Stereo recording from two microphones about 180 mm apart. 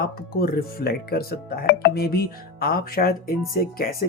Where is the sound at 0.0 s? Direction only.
55° left (ahead or behind).